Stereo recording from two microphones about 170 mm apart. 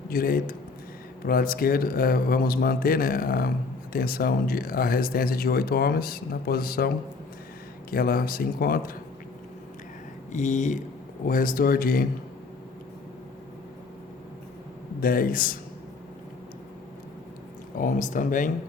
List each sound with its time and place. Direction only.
0.1 s speech: 55° left (ahead or behind)
10.3 s speech: 45° left (ahead or behind)
11.3 s speech: 55° left (ahead or behind)
15.0 s speech: 55° left (ahead or behind)
17.7 s speech: 50° left (ahead or behind)